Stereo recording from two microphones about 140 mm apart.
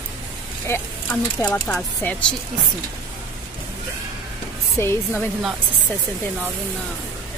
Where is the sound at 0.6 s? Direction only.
15° left (ahead or behind).